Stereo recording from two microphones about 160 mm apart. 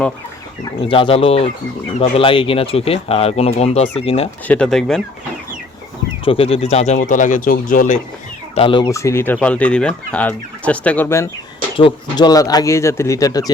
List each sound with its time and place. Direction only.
0.9 s speech: 35° left (ahead or behind)
4.4 s speech: 5° left (ahead or behind)
6.2 s speech: 35° left (ahead or behind); by 7.9 s 55° left (ahead or behind)
8.5 s speech: 30° left (ahead or behind)
8.9 s speech: 20° left (ahead or behind)
11.8 s speech: 30° left (ahead or behind)